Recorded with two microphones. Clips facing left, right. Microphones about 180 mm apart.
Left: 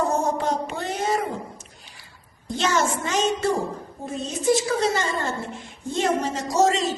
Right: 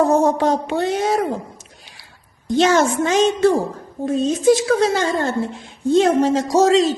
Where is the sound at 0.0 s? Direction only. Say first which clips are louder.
Right 8 dB; 75° right (ahead or behind).